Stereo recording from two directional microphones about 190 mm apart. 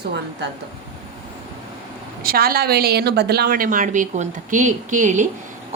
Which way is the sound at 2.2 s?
50° right (ahead or behind).